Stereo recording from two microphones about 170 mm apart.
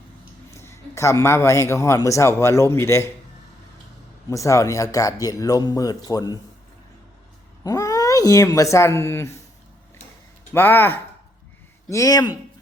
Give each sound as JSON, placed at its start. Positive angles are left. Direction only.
{"t": 0.5, "sound": "a man's voice", "side_deg": 15}
{"t": 4.3, "sound": "speech", "side_deg": 20}
{"t": 7.6, "sound": "speech", "side_deg": 20}
{"t": 10.5, "sound": "a man's voice", "side_deg": 15}